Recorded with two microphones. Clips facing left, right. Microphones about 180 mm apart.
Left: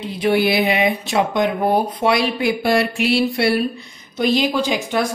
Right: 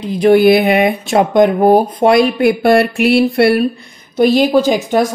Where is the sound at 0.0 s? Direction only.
45° right (ahead or behind).